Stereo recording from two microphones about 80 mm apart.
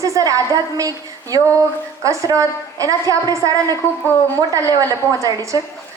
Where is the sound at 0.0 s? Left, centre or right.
Right.